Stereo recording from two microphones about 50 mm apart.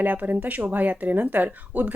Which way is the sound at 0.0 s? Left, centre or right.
Right.